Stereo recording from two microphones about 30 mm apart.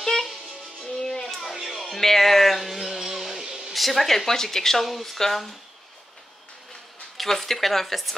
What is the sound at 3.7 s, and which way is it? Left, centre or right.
A woman's voice, centre.